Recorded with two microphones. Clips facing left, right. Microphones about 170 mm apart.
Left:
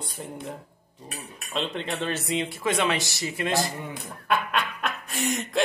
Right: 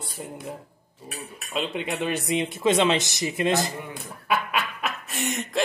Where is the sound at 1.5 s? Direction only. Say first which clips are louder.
Right 1 dB; 10° right (ahead or behind).